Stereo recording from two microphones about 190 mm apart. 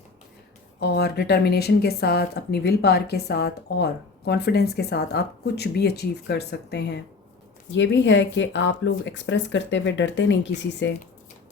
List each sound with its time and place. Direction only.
0.8 s speech: 60° left (ahead or behind)
7.7 s speech: 70° left (ahead or behind)